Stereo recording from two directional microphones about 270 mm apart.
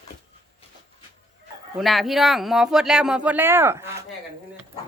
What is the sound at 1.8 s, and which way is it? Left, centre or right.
Speech, centre.